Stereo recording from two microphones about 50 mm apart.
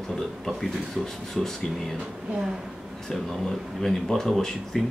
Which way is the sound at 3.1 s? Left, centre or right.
Centre.